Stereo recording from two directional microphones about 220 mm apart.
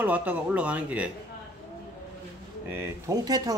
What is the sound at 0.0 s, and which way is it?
Speech, 5° right (ahead or behind).